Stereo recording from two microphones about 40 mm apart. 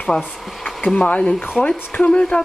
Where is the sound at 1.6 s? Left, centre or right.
Left.